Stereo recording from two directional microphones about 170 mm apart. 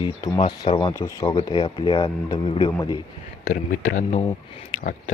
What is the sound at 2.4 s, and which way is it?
Speech, 35° left (ahead or behind).